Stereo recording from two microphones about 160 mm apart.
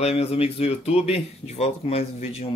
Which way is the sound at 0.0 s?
40° left (ahead or behind).